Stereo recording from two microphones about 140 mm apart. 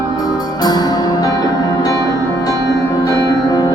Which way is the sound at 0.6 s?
30° left (ahead or behind).